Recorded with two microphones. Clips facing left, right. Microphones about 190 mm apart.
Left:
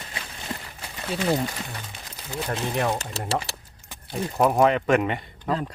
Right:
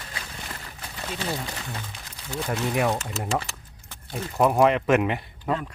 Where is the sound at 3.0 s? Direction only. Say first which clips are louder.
Even; 35° left (ahead or behind).